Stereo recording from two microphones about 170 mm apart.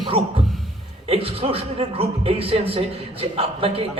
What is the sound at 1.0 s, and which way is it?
A man's voice, 35° right (ahead or behind).